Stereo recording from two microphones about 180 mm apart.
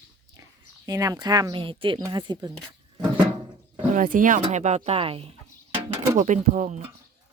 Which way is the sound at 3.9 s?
50° right (ahead or behind).